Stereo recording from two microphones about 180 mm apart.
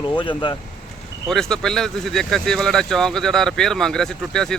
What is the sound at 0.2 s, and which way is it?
Speech, 25° left (ahead or behind).